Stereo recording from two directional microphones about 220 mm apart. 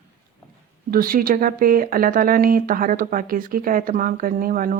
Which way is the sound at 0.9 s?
40° right (ahead or behind).